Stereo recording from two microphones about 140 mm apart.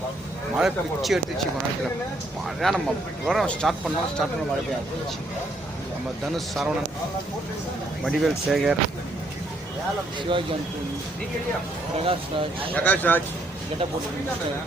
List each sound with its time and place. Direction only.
0.5 s speech: 5° right (ahead or behind)
2.6 s speech: centre (ahead or behind)
6.3 s speech: centre (ahead or behind)
8.0 s speech: centre (ahead or behind)
10.3 s speech: 35° right (ahead or behind)
12.0 s speech: 40° right (ahead or behind)
12.7 s speech: 10° left (ahead or behind)